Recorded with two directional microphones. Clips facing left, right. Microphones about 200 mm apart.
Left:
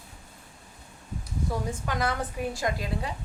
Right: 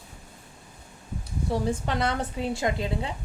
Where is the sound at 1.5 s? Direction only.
30° right (ahead or behind).